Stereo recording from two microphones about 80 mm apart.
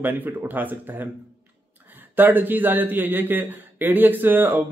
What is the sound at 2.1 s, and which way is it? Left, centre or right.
A man's voice, right.